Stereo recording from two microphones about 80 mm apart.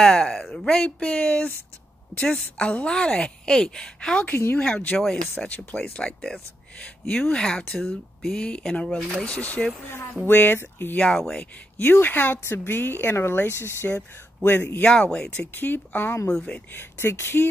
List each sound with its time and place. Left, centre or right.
0.0 s speech: centre; by 11.0 s left
11.0 s speech: centre
11.8 s speech: left
14.9 s speech: centre
15.3 s speech: left
16.3 s speech: centre; by 17.5 s left